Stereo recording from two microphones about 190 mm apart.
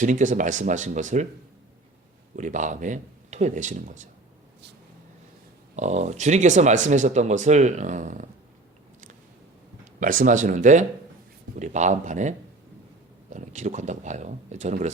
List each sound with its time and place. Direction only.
0.0 s speech: 40° right (ahead or behind)
2.3 s speech: 40° right (ahead or behind)
5.7 s speech: 40° right (ahead or behind)
10.0 s speech: 45° right (ahead or behind)
13.3 s speech: 40° right (ahead or behind)